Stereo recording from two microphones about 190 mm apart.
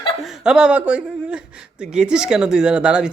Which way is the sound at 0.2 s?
5° right (ahead or behind).